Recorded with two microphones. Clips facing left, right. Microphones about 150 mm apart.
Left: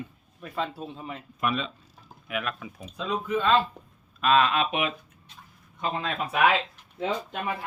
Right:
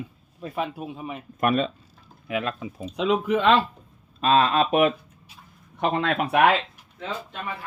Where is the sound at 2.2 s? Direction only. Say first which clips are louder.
Right 4 dB; 30° right (ahead or behind).